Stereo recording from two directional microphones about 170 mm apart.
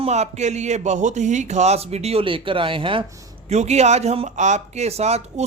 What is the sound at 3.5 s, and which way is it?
Speech, 40° right (ahead or behind).